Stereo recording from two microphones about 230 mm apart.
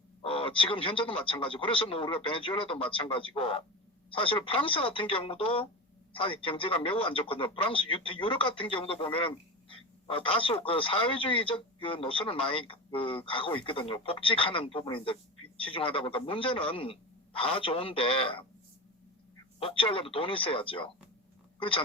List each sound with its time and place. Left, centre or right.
0.2 s speech: left
19.5 s speech: left